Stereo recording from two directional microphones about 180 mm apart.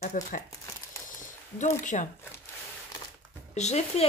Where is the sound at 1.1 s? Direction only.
45° left (ahead or behind).